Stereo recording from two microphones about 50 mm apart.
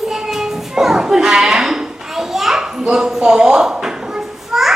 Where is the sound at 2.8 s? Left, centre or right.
Centre.